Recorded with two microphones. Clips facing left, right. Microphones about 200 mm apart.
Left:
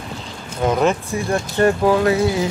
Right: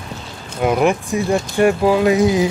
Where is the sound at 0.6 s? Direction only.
15° right (ahead or behind).